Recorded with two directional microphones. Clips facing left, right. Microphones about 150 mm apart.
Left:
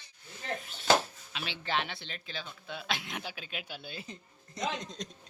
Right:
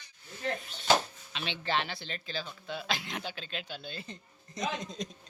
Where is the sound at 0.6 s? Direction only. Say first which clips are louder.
Right 1 dB; 5° left (ahead or behind).